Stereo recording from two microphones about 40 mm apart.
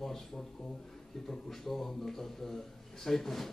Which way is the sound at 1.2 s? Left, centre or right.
Centre.